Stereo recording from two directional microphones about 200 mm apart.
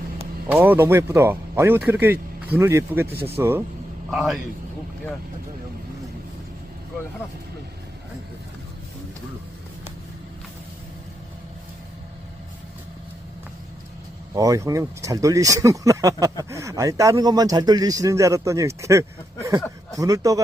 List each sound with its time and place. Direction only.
0.4 s a man's voice: 10° right (ahead or behind)
4.1 s a man's voice: centre (ahead or behind)
14.3 s a man's voice: 15° right (ahead or behind)